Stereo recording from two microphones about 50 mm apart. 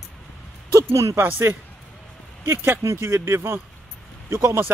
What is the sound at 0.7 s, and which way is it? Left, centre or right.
Speech, right.